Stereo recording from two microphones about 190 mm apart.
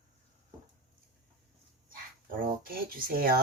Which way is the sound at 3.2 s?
50° right (ahead or behind).